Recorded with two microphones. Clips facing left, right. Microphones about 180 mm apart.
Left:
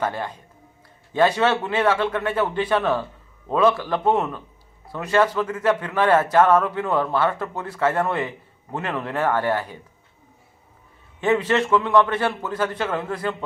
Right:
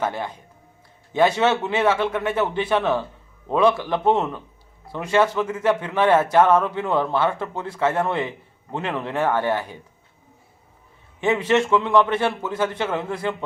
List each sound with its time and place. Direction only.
0.0 s speech: 10° right (ahead or behind)
11.2 s speech: 10° right (ahead or behind)